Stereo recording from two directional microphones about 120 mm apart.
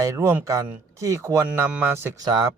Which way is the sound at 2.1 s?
30° right (ahead or behind).